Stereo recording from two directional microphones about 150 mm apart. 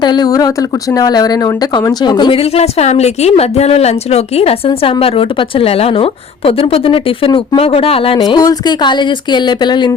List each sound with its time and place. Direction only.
0.0 s a woman's voice: 30° left (ahead or behind)
8.2 s speech: 25° left (ahead or behind)